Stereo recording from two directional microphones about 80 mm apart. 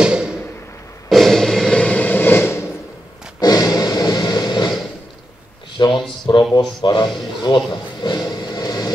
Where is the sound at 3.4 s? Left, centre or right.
Left.